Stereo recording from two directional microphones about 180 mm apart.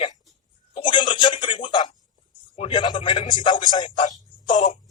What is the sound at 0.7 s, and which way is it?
Telephone, 25° left (ahead or behind).